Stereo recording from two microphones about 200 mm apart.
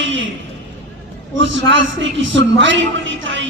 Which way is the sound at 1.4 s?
65° right (ahead or behind).